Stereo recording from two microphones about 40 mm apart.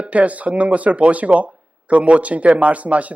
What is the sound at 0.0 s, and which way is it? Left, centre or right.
Speech, right.